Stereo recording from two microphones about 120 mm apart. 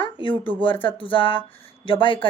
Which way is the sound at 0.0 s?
45° left (ahead or behind).